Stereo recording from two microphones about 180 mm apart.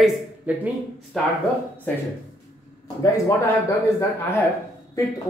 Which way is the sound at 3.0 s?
15° left (ahead or behind).